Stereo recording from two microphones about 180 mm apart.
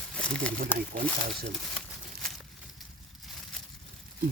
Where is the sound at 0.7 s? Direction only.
50° right (ahead or behind).